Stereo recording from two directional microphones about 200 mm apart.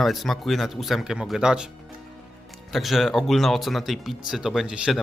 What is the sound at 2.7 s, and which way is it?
Speech, centre (ahead or behind).